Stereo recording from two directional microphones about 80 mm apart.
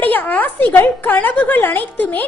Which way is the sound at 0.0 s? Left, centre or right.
Left.